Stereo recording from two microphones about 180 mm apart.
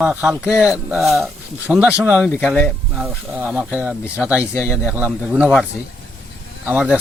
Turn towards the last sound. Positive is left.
turn(degrees=-5)  # may be behind; listen again after turning